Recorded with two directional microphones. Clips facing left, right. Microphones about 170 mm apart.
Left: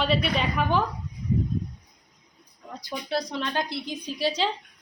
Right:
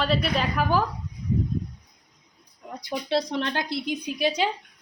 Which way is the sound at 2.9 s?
25° right (ahead or behind).